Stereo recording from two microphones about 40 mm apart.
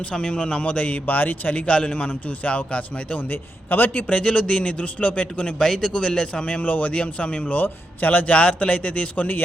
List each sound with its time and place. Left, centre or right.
0.1 s a man's voice: left
1.5 s a man's voice: left
3.2 s a man's voice: left
4.1 s a man's voice: left
5.5 s a man's voice: centre
6.6 s a man's voice: left
7.5 s a man's voice: left